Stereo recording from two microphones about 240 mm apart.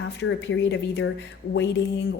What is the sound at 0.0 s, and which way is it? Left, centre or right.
A woman's voice, left.